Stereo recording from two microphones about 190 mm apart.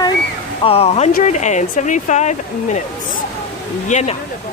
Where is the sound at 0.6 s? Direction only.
30° left (ahead or behind).